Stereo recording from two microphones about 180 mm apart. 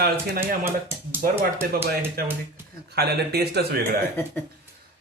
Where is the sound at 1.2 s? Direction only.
50° right (ahead or behind).